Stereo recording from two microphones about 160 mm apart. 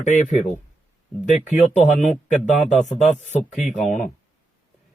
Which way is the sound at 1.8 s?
50° left (ahead or behind).